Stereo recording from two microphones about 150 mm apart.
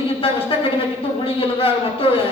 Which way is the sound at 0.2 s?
40° left (ahead or behind).